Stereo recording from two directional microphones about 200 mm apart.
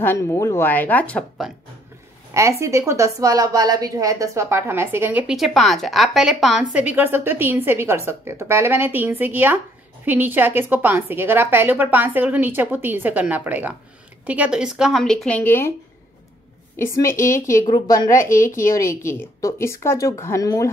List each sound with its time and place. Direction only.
0.0 s speech: 10° left (ahead or behind)
2.3 s a woman's voice: 15° right (ahead or behind); by 15.7 s 10° left (ahead or behind)
16.7 s speech: 15° left (ahead or behind)